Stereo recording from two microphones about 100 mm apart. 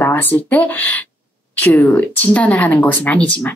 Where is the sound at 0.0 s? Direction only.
20° left (ahead or behind).